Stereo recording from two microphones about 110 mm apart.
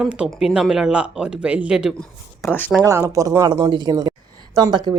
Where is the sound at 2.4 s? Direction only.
20° left (ahead or behind).